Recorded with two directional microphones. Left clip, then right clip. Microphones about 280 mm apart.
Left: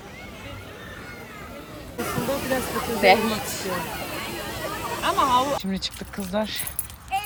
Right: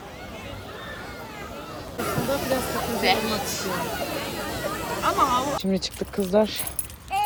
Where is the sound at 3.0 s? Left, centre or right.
Left.